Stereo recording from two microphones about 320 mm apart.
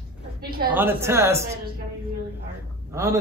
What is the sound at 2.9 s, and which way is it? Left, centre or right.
Speech, centre.